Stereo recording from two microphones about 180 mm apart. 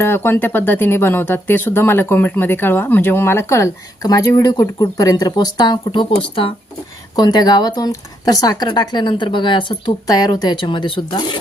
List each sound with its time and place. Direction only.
0.0 s speech: 10° left (ahead or behind)
7.2 s speech: 20° left (ahead or behind)